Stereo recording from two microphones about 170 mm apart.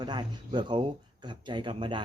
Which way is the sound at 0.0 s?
25° right (ahead or behind).